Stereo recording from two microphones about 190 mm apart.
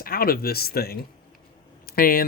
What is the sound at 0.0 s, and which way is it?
Speech, 50° left (ahead or behind).